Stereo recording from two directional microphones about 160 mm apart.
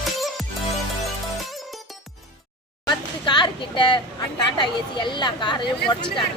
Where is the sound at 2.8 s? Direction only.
25° left (ahead or behind).